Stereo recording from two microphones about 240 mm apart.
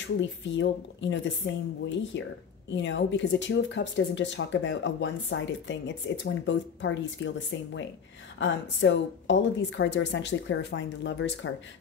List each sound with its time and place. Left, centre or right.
0.0 s speech: left